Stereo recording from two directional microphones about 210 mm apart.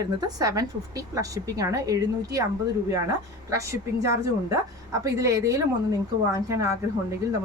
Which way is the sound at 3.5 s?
15° right (ahead or behind).